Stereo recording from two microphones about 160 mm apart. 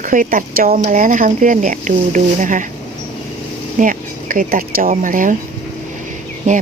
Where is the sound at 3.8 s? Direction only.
55° right (ahead or behind).